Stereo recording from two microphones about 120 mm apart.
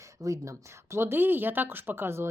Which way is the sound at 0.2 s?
30° right (ahead or behind).